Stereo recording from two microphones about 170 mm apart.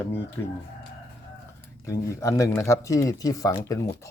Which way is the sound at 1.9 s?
20° left (ahead or behind).